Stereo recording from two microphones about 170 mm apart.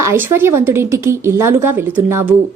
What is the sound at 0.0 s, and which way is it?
A woman's voice, 15° right (ahead or behind).